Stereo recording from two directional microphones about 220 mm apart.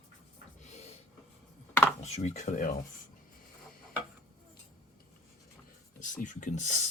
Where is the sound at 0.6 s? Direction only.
30° left (ahead or behind).